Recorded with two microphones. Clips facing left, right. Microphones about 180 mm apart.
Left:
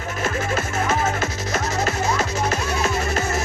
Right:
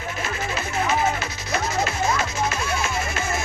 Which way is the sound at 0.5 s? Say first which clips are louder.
Right 2 dB; 45° left (ahead or behind).